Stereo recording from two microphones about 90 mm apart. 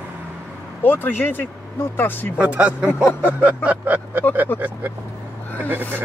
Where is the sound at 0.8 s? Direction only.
20° left (ahead or behind).